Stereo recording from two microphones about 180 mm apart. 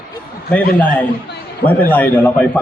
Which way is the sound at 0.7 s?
5° left (ahead or behind).